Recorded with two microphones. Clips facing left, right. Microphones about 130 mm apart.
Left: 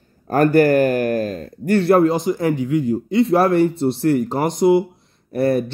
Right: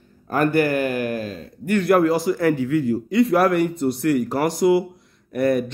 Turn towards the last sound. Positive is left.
turn(degrees=30)  # may be behind; listen again after turning